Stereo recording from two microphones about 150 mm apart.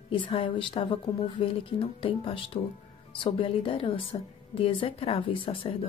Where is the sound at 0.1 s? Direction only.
35° left (ahead or behind).